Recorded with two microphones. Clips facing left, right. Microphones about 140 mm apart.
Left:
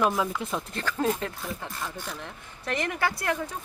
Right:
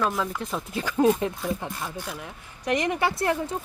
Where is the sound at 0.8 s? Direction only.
15° right (ahead or behind).